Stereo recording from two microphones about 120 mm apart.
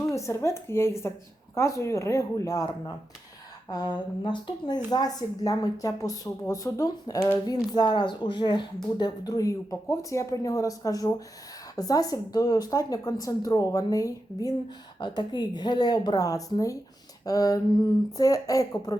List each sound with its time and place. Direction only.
0.1 s speech: 25° left (ahead or behind)